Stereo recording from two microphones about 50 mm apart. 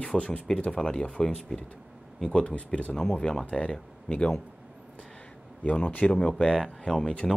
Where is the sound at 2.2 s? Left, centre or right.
Left.